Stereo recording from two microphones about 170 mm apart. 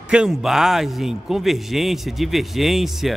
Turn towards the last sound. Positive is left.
turn(degrees=0)  # may be behind; listen again after turning